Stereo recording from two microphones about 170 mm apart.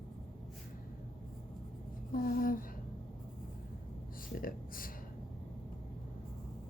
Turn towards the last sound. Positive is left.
turn(degrees=55)  # may be behind; listen again after turning